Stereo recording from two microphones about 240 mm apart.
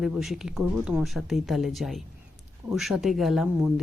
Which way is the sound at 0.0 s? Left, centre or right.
Centre.